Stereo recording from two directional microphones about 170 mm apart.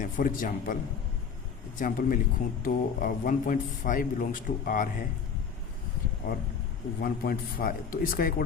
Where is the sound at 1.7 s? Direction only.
55° left (ahead or behind).